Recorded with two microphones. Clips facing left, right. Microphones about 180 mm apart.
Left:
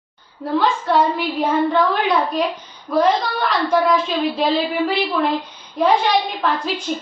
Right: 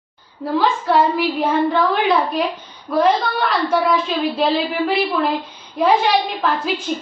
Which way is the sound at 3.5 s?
Centre (ahead or behind).